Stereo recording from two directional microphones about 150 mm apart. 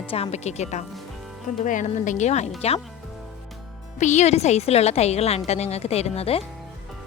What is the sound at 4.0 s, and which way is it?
A woman's voice, 50° left (ahead or behind).